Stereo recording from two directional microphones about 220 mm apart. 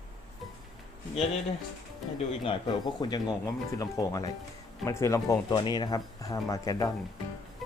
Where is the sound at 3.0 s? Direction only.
20° left (ahead or behind).